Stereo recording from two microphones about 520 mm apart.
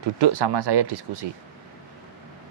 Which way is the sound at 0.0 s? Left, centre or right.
Right.